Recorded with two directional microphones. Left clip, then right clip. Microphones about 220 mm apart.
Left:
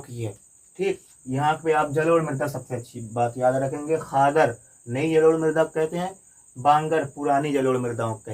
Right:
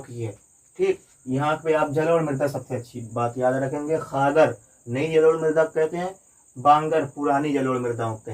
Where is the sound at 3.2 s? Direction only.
5° left (ahead or behind).